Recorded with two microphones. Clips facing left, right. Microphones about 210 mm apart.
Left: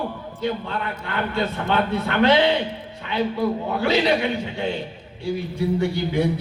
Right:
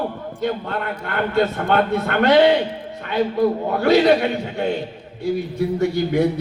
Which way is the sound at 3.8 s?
50° right (ahead or behind).